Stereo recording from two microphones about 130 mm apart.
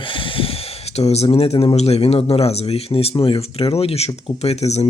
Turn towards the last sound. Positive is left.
turn(degrees=55)  # may be behind; listen again after turning